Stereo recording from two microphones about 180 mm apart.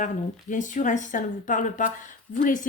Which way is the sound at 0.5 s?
45° left (ahead or behind).